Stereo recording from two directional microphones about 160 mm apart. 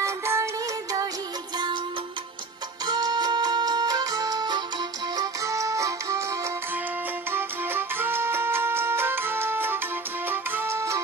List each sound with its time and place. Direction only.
0.0 s music: 15° right (ahead or behind)
2.9 s music: 25° right (ahead or behind)
7.2 s music: 15° right (ahead or behind)